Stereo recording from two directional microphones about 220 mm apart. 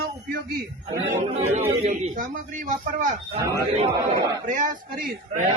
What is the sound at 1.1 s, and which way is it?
A man's voice, 35° right (ahead or behind).